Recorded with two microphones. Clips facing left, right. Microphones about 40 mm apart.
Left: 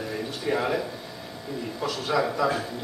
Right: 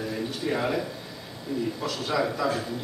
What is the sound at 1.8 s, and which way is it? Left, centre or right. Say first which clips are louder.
Speech: left 5 dB; centre.